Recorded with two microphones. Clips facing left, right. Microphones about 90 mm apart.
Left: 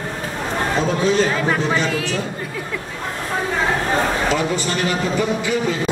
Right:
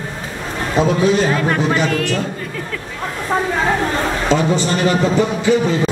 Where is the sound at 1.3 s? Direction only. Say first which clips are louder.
Right 2 dB; centre (ahead or behind).